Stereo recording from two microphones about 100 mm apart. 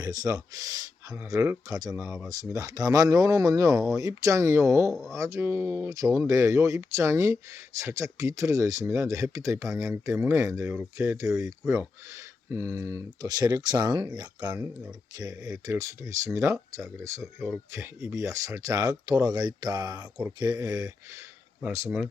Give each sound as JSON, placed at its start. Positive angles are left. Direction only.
{"t": 0.0, "sound": "speech", "side_deg": -40}
{"t": 1.2, "sound": "speech", "side_deg": -25}
{"t": 21.8, "sound": "speech", "side_deg": -10}